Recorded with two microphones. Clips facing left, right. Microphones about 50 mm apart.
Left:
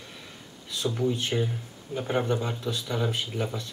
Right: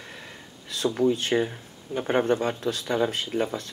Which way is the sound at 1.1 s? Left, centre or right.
Right.